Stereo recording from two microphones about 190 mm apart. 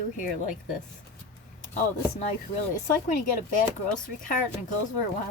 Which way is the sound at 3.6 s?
45° left (ahead or behind).